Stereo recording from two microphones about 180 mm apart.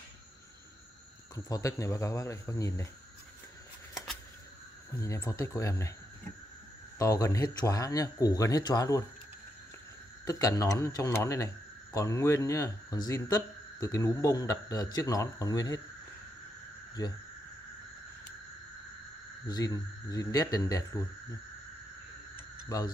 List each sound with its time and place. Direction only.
1.3 s speech: 20° left (ahead or behind)
4.9 s speech: 15° left (ahead or behind)
7.0 s speech: 15° left (ahead or behind)
10.2 s speech: 20° left (ahead or behind)
17.0 s speech: 20° left (ahead or behind)
19.4 s speech: 20° left (ahead or behind)